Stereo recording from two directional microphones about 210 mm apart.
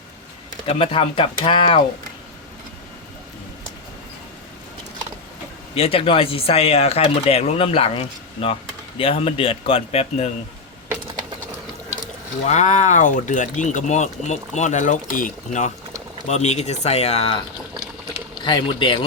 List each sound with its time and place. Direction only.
0.6 s speech: 25° left (ahead or behind)
5.7 s speech: 25° left (ahead or behind)
12.5 s speech: 35° left (ahead or behind)
18.4 s speech: 20° left (ahead or behind)